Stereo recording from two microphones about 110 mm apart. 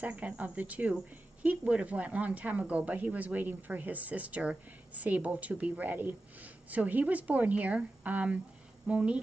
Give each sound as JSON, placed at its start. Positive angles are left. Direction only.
{"t": 0.0, "sound": "speech", "side_deg": -10}